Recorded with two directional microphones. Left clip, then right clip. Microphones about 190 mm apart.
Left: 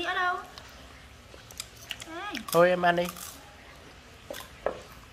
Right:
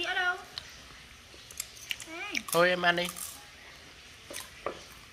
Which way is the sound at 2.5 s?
10° left (ahead or behind).